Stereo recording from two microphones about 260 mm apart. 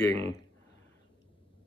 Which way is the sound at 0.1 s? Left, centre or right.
Right.